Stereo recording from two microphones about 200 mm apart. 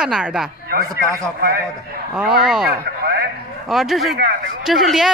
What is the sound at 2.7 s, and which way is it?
Radio, 50° right (ahead or behind).